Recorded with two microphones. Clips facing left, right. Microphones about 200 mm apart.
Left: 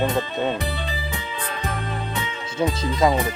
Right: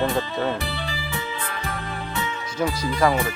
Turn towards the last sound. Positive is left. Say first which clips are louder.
# left 1 dB
turn(degrees=20)  # may be behind; listen again after turning